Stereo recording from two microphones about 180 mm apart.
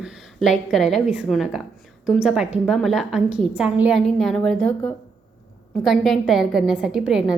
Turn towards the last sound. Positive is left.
turn(degrees=-5)  # may be behind; listen again after turning